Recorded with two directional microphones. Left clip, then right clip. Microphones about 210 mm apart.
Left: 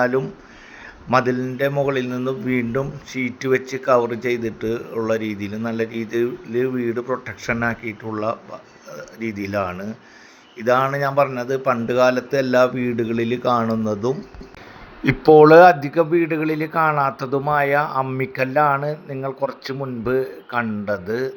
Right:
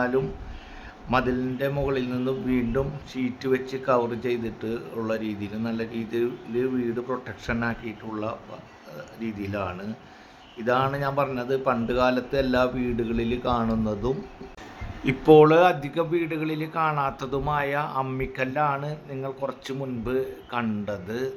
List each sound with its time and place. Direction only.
1.1 s a man's voice: 20° left (ahead or behind)
9.4 s a man's voice: 20° left (ahead or behind)
15.0 s a man's voice: 25° left (ahead or behind)